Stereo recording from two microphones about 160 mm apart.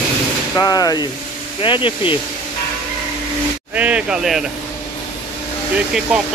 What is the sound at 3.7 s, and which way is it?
Speech, 10° right (ahead or behind).